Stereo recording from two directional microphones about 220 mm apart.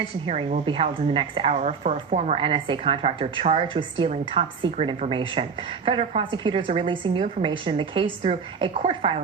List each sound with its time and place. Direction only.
0.3 s a woman's voice: 25° right (ahead or behind)